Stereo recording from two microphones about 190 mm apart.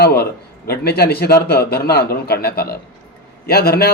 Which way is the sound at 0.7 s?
55° left (ahead or behind).